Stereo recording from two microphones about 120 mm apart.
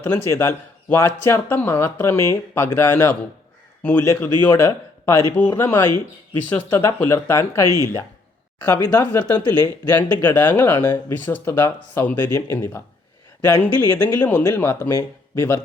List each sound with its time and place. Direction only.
0.3 s speech: 20° left (ahead or behind)
5.4 s speech: 15° left (ahead or behind)